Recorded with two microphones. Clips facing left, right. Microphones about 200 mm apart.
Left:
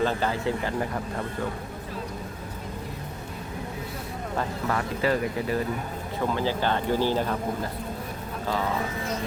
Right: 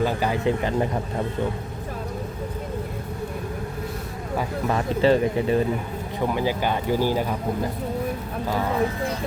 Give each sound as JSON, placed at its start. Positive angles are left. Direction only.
{"t": 0.0, "sound": "speech", "side_deg": -10}
{"t": 4.7, "sound": "speech", "side_deg": -25}
{"t": 6.1, "sound": "speech", "side_deg": -15}